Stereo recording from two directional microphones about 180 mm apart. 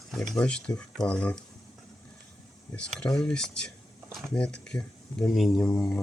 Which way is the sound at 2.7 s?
5° left (ahead or behind).